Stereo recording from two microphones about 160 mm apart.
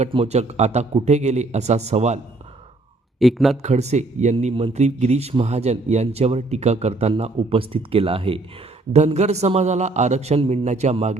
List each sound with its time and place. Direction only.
0.0 s a man's voice: 40° right (ahead or behind)
3.2 s speech: centre (ahead or behind)
3.6 s a man's voice: 45° right (ahead or behind)